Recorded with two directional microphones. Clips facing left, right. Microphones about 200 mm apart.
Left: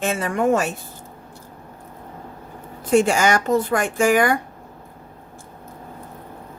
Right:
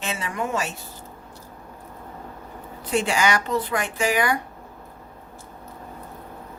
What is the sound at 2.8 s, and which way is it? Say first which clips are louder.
Speech: left 6 dB; 45° left (ahead or behind).